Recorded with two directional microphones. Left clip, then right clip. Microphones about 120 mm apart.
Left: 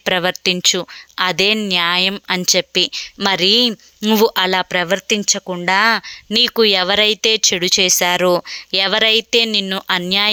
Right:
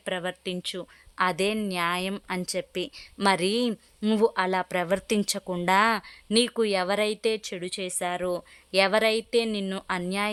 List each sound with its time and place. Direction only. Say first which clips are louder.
0.0 s speech: left 14 dB; 50° left (ahead or behind)
1.1 s speech: left 10 dB; 25° left (ahead or behind)
4.1 s speech: left 10 dB; 30° left (ahead or behind)
4.4 s speech: left 10 dB; 20° left (ahead or behind)
7.5 s speech: left 19 dB; 45° left (ahead or behind)
8.7 s speech: left 8 dB; 20° left (ahead or behind)